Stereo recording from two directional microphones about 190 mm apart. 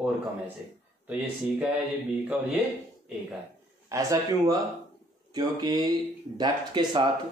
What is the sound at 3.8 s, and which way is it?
Speech, 20° right (ahead or behind).